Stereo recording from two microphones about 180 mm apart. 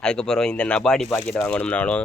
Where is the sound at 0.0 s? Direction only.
5° left (ahead or behind).